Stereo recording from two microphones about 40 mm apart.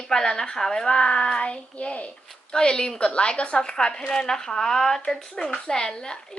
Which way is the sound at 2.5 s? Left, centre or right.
Centre.